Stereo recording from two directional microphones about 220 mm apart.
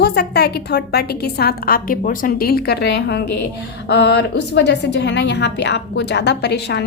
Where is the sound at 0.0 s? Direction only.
50° left (ahead or behind).